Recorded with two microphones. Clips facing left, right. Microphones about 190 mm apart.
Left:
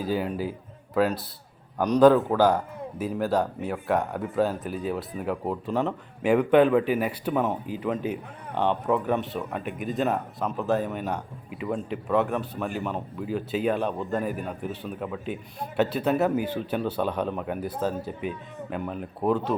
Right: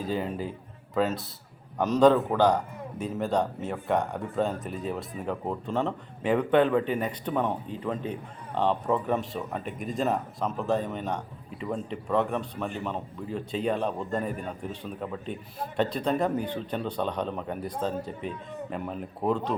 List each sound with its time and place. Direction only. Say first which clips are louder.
0.0 s speech: left 3 dB; 5° left (ahead or behind)